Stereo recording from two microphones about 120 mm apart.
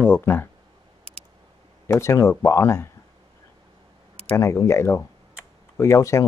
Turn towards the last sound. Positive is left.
turn(degrees=25)  # may be behind; listen again after turning